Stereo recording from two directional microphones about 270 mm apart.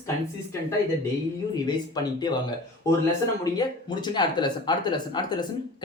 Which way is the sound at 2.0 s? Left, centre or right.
Centre.